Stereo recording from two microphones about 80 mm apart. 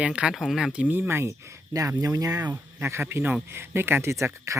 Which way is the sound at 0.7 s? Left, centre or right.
Right.